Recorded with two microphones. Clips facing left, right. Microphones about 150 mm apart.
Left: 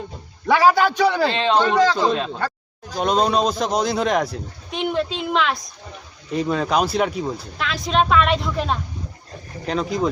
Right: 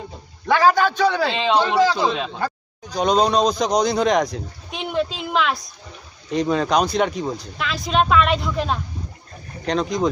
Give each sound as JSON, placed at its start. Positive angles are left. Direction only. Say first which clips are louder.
{"t": 0.4, "sound": "a man's voice", "louder": "left 1 dB", "side_deg": 15}
{"t": 1.2, "sound": "speech", "louder": "left 1 dB", "side_deg": 0}